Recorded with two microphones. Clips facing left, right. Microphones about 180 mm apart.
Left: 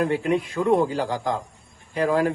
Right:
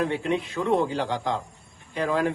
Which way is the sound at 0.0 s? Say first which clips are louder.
Left 3 dB; 50° left (ahead or behind).